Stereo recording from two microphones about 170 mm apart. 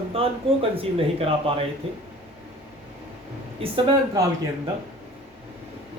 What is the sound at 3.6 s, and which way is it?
Speech, 35° right (ahead or behind).